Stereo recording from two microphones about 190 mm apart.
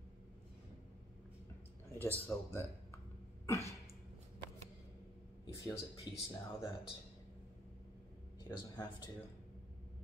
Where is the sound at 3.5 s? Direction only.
15° left (ahead or behind).